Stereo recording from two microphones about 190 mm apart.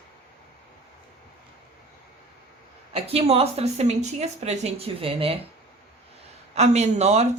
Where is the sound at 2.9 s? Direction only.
30° right (ahead or behind).